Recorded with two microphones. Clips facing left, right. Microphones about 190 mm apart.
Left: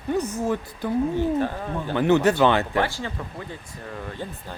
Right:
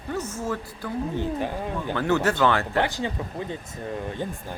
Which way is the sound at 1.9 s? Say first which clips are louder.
Left 5 dB; 20° left (ahead or behind).